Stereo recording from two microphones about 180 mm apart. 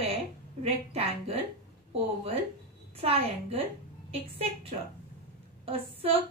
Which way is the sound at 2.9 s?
35° right (ahead or behind).